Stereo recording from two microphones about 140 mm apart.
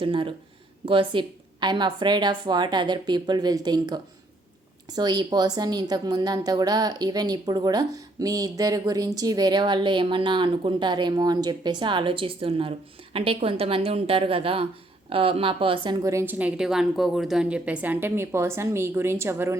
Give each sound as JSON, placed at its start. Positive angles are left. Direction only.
{"t": 0.0, "sound": "a woman's voice", "side_deg": -40}
{"t": 16.0, "sound": "a woman's voice", "side_deg": -15}